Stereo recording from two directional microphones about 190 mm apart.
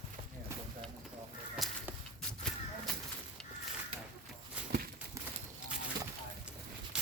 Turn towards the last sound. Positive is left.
turn(degrees=-5)  # may be behind; listen again after turning